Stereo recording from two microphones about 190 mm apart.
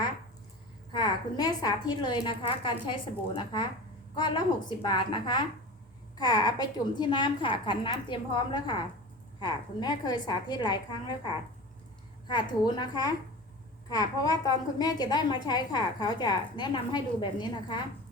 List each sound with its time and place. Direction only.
0.9 s a woman's voice: 20° left (ahead or behind)
12.3 s a woman's voice: 25° left (ahead or behind)